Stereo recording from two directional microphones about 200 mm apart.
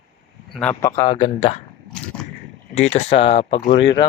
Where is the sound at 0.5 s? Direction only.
5° left (ahead or behind).